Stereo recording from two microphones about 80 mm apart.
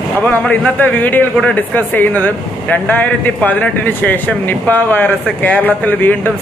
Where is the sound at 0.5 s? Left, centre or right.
Left.